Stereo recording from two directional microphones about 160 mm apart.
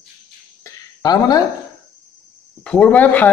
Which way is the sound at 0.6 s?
25° left (ahead or behind).